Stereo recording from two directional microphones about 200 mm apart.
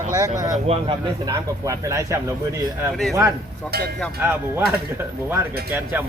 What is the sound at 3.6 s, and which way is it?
Speech, 50° right (ahead or behind).